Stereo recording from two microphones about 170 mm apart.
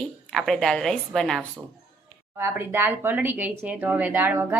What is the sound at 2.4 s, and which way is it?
Speech, 15° right (ahead or behind).